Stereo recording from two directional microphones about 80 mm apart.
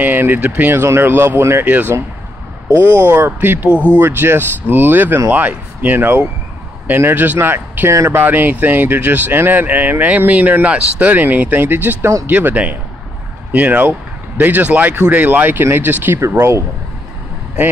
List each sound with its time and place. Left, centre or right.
0.0 s speech: right
0.7 s speech: right
7.9 s speech: right
8.2 s speech: right